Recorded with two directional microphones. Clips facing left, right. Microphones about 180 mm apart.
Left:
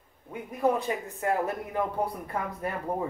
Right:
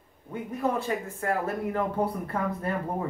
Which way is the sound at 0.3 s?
15° left (ahead or behind).